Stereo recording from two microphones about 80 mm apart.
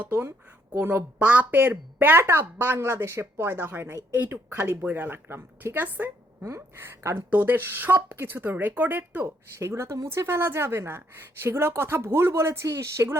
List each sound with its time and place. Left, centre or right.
0.0 s speech: right